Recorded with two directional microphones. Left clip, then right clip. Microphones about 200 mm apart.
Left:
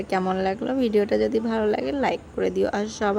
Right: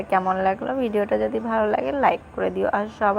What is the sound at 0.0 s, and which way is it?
A woman's voice, 20° left (ahead or behind).